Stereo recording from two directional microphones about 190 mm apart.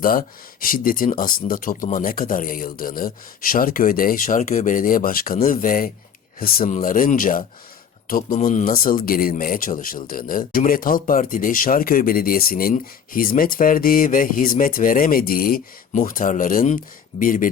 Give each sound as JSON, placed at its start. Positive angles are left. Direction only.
{"t": 0.0, "sound": "a man's voice", "side_deg": 50}